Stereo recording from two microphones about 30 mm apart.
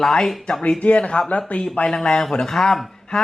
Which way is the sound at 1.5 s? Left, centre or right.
Left.